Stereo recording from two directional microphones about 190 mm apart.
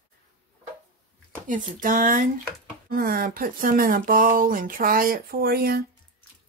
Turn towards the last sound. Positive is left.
turn(degrees=-55)  # may be behind; listen again after turning